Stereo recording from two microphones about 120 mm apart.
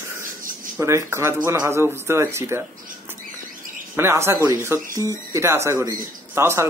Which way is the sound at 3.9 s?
20° right (ahead or behind).